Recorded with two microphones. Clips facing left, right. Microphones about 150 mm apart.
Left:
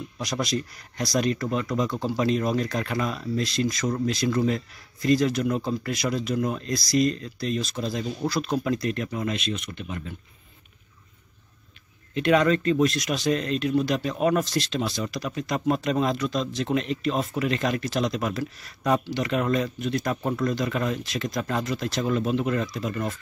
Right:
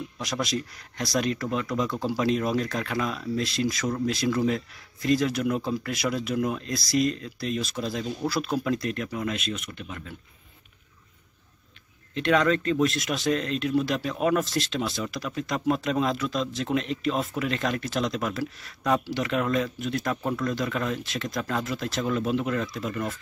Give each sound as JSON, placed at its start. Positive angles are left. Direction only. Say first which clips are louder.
{"t": 0.2, "sound": "speech", "louder": "left 2 dB", "side_deg": -5}
{"t": 12.1, "sound": "speech", "louder": "left 2 dB", "side_deg": 5}